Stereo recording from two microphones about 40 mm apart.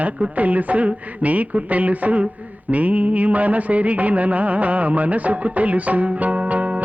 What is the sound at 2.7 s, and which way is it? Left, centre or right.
Music, right.